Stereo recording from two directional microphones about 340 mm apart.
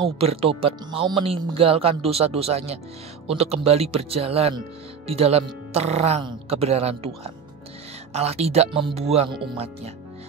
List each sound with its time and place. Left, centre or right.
0.2 s speech: centre